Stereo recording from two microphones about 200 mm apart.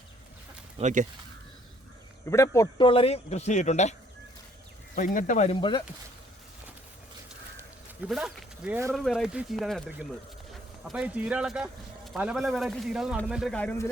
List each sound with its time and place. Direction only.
0.8 s speech: 35° right (ahead or behind)
2.3 s speech: 15° left (ahead or behind); by 3.9 s 35° left (ahead or behind)
4.9 s speech: 40° left (ahead or behind)
5.5 s speech: 25° left (ahead or behind)
8.0 s speech: centre (ahead or behind)